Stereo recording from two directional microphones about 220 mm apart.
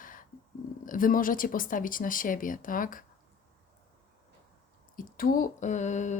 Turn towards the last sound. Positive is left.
turn(degrees=35)  # may be behind; listen again after turning